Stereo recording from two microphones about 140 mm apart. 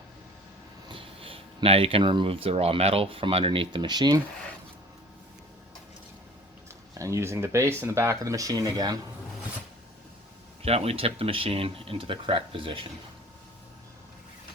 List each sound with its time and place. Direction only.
0.9 s speech: 40° right (ahead or behind)
7.0 s speech: 20° right (ahead or behind)
10.6 s speech: 45° right (ahead or behind)